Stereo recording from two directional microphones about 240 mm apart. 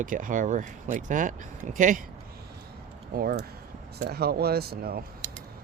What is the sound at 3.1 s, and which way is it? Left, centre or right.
Speech, right.